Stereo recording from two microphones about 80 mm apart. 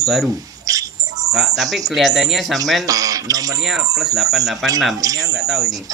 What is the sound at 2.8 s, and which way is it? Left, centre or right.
Speech, right.